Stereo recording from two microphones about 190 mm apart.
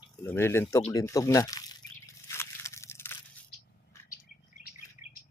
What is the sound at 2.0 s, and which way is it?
Biting, 15° left (ahead or behind).